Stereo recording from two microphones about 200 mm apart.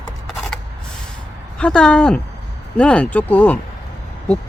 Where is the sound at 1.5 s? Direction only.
5° left (ahead or behind).